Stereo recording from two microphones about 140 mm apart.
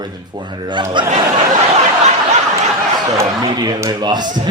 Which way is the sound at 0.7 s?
35° right (ahead or behind).